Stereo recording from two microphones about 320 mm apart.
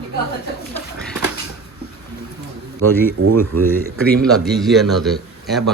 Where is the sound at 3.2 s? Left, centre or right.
Right.